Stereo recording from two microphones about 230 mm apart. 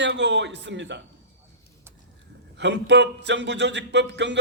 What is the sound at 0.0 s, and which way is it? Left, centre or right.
Speech, right.